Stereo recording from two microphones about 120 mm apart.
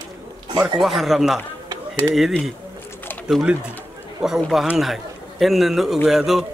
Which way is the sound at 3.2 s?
10° right (ahead or behind).